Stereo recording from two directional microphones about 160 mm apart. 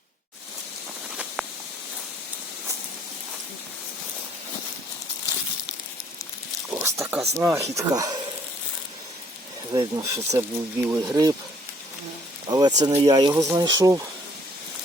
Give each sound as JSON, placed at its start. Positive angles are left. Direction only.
{"t": 1.1, "sound": "a sound", "side_deg": -5}
{"t": 6.7, "sound": "speech", "side_deg": -15}
{"t": 9.7, "sound": "speech", "side_deg": -20}
{"t": 12.5, "sound": "speech", "side_deg": -25}